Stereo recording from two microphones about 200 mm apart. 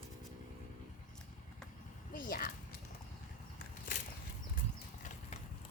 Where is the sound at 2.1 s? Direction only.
45° left (ahead or behind).